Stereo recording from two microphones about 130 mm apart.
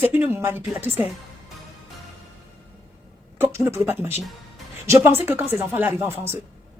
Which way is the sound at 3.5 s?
20° right (ahead or behind).